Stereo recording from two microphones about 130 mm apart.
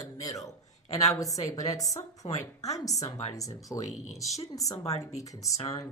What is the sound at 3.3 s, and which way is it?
Speech, 25° left (ahead or behind).